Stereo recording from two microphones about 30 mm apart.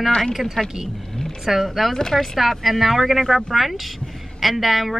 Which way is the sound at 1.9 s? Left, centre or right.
Centre.